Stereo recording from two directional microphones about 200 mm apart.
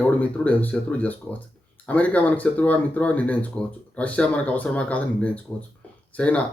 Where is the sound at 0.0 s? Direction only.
5° left (ahead or behind).